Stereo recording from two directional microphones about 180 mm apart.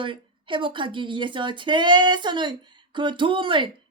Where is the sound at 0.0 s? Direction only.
30° right (ahead or behind).